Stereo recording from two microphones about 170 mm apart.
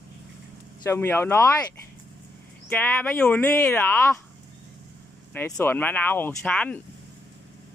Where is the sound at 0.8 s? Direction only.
15° left (ahead or behind).